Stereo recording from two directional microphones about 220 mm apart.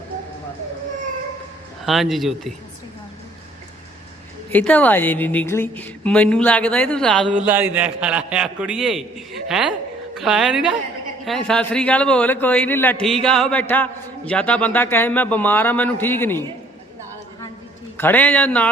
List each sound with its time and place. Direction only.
1.8 s a man's voice: centre (ahead or behind)
4.5 s a man's voice: 5° left (ahead or behind)
7.3 s a man's voice: 10° right (ahead or behind); by 16.4 s 10° left (ahead or behind)
17.9 s a man's voice: 10° left (ahead or behind)